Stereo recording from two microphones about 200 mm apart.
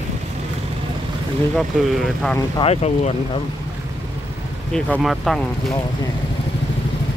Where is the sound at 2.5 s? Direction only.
30° left (ahead or behind).